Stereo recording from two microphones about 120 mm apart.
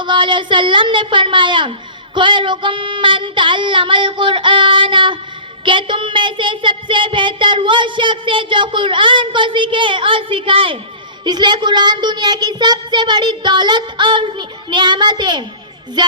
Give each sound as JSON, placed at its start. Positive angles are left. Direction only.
{"t": 0.0, "sound": "a child's voice", "side_deg": -40}
{"t": 2.1, "sound": "child singing", "side_deg": -40}
{"t": 11.3, "sound": "a child's voice", "side_deg": -40}